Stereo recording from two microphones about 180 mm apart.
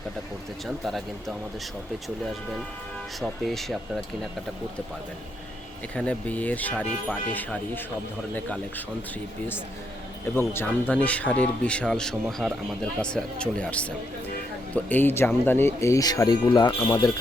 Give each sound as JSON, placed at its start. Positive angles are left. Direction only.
{"t": 2.0, "sound": "speech", "side_deg": 0}
{"t": 5.9, "sound": "speech", "side_deg": 5}
{"t": 10.3, "sound": "speech", "side_deg": 10}